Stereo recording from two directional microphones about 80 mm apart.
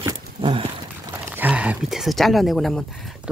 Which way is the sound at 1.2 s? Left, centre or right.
Right.